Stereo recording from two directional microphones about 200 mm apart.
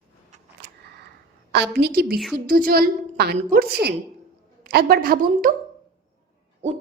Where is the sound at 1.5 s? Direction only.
55° right (ahead or behind).